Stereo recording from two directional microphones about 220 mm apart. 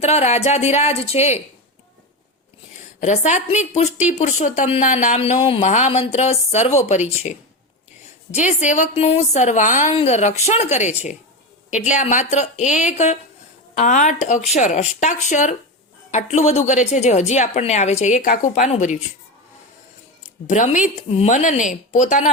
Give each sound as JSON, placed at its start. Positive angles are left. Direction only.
{"t": 0.0, "sound": "speech", "side_deg": 30}
{"t": 3.0, "sound": "speech", "side_deg": 30}
{"t": 20.5, "sound": "speech", "side_deg": 35}